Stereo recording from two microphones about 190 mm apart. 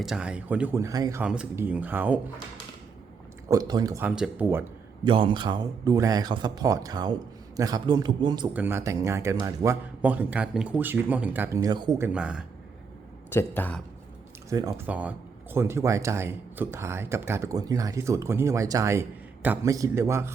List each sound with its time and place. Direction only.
0.0 s speech: 5° right (ahead or behind)
1.2 s speech: 5° right (ahead or behind)
3.5 s speech: 20° right (ahead or behind)
5.0 s speech: 25° right (ahead or behind)
8.5 s speech: 10° right (ahead or behind)
12.0 s speech: 5° right (ahead or behind)
13.3 s speech: 10° left (ahead or behind)
14.5 s speech: 20° right (ahead or behind)
14.8 s speech: 5° right (ahead or behind)